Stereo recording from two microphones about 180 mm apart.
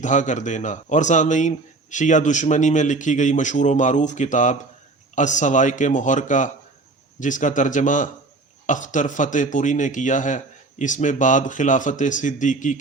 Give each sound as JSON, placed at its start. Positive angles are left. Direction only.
{"t": 0.0, "sound": "speech", "side_deg": 45}